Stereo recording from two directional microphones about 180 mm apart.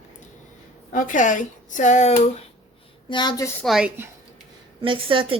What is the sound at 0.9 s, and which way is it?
Speech, 45° left (ahead or behind).